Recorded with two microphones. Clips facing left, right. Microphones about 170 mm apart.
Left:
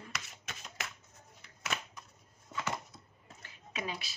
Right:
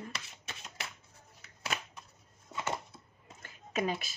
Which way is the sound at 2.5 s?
25° right (ahead or behind).